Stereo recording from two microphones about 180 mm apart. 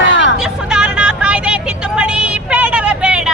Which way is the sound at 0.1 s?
80° left.